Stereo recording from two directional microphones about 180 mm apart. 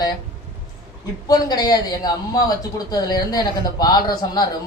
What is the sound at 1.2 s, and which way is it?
Speech, 20° left (ahead or behind).